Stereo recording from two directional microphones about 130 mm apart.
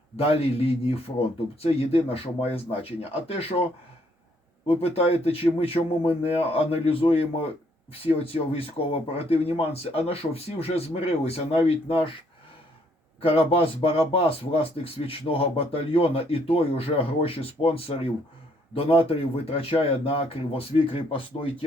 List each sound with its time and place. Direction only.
0.2 s speech: 50° left (ahead or behind)
13.3 s speech: 45° left (ahead or behind)